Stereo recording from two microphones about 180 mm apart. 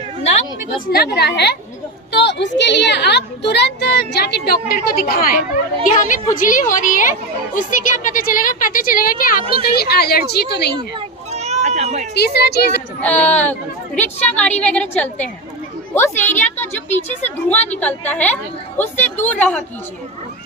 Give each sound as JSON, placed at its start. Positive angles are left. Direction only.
{"t": 0.9, "sound": "a woman's voice", "side_deg": 60}
{"t": 2.1, "sound": "a child's voice", "side_deg": 75}
{"t": 11.3, "sound": "a sound", "side_deg": -35}
{"t": 12.1, "sound": "a woman's voice", "side_deg": 65}
{"t": 13.0, "sound": "a woman's voice", "side_deg": 10}
{"t": 16.9, "sound": "a woman's voice", "side_deg": 40}
{"t": 17.7, "sound": "a woman's voice", "side_deg": 10}